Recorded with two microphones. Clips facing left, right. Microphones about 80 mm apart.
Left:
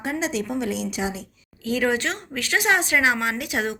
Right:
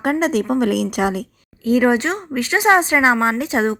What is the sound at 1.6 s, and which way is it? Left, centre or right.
A woman's voice, right.